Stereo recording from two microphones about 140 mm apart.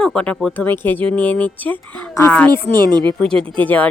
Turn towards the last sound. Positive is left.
turn(degrees=10)  # may be behind; listen again after turning